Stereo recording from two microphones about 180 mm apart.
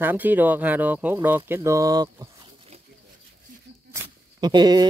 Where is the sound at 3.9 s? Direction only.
20° right (ahead or behind).